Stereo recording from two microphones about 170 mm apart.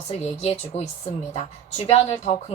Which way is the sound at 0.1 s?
40° left (ahead or behind).